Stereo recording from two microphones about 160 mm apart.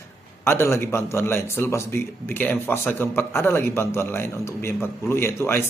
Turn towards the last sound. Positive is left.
turn(degrees=15)  # may be behind; listen again after turning